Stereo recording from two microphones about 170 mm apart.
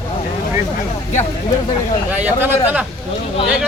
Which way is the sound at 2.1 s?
10° right (ahead or behind).